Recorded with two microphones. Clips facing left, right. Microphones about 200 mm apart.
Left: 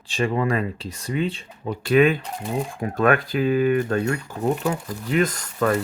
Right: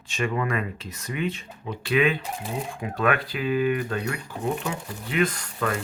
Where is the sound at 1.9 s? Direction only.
45° left (ahead or behind).